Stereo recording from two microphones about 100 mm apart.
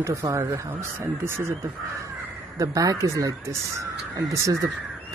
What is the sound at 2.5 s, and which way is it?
Speech, 35° right (ahead or behind).